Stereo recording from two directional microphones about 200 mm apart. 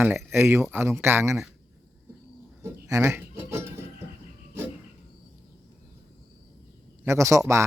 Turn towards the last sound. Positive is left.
turn(degrees=-15)  # may be behind; listen again after turning